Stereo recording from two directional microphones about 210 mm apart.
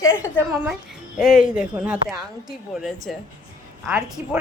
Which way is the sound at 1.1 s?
5° right (ahead or behind).